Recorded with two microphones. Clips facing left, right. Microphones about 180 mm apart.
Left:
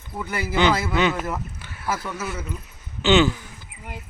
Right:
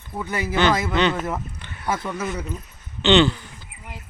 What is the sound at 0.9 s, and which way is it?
Speech, 10° left (ahead or behind).